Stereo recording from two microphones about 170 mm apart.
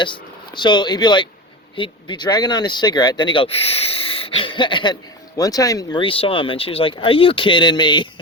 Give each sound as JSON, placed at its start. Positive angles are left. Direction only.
{"t": 0.5, "sound": "speech", "side_deg": 25}